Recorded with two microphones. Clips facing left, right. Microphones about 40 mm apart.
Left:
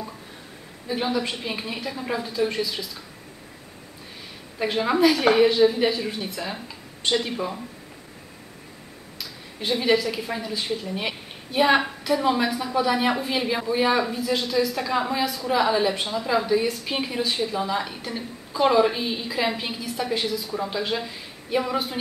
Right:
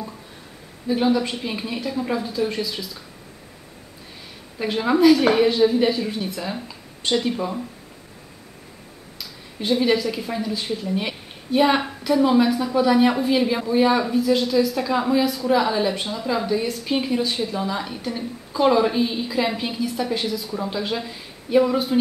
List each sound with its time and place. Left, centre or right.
0.8 s speech: centre
4.6 s speech: centre
9.2 s speech: centre